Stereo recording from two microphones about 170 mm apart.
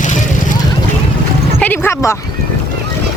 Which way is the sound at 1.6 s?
10° left (ahead or behind).